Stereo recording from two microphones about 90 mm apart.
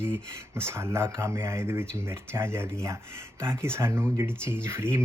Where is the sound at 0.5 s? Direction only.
30° right (ahead or behind).